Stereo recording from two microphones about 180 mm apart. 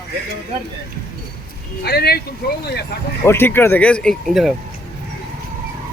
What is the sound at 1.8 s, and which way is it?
Speech, 60° left (ahead or behind).